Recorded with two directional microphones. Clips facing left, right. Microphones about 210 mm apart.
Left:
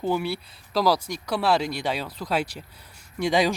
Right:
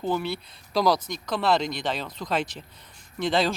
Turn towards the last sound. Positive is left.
turn(degrees=10)  # may be behind; listen again after turning